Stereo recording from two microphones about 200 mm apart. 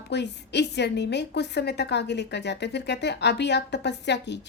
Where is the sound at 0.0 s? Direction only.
55° left (ahead or behind).